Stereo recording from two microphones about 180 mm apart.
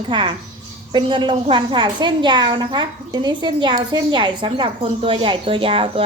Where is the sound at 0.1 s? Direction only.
25° right (ahead or behind).